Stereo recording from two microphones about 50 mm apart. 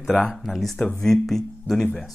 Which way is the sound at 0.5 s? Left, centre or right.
Centre.